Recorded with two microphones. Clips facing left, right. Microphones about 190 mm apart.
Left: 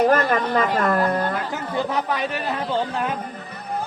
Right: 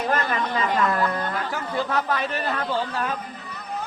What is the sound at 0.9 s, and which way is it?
Speech, 35° left (ahead or behind).